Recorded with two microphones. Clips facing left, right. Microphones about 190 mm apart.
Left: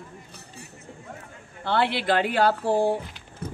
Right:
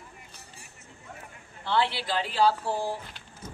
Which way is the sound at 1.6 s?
60° left (ahead or behind).